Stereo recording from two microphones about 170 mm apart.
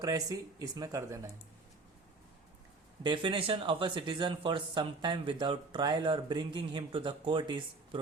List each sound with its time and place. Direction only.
0.0 s speech: 20° right (ahead or behind)
3.0 s speech: 30° right (ahead or behind)